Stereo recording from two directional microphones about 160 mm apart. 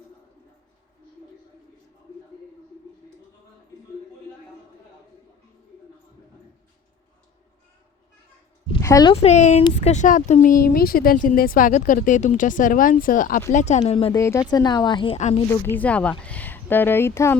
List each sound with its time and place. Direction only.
8.8 s speech: 20° left (ahead or behind)
9.2 s speech: 45° left (ahead or behind)
13.5 s speech: 45° left (ahead or behind)
14.1 s speech: 20° left (ahead or behind)
15.6 s speech: 10° left (ahead or behind)